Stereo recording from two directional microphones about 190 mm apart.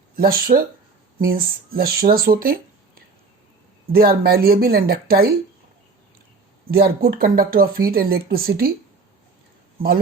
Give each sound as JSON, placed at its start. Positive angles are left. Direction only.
{"t": 0.2, "sound": "speech", "side_deg": -50}
{"t": 6.7, "sound": "speech", "side_deg": -55}